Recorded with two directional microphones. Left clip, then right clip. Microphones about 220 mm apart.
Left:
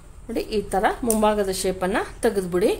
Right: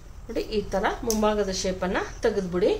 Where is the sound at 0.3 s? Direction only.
40° left (ahead or behind).